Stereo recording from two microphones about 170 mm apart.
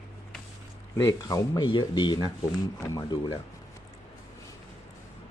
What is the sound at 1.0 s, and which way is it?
Speech, 20° left (ahead or behind).